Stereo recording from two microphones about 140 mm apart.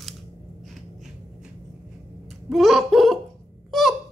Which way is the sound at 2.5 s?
Centre (ahead or behind).